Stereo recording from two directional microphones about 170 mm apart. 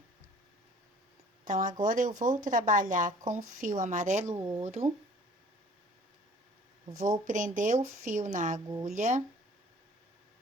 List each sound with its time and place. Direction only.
1.5 s speech: 50° right (ahead or behind)
4.4 s speech: 15° right (ahead or behind)
4.6 s speech: 40° right (ahead or behind)
7.3 s speech: 50° right (ahead or behind)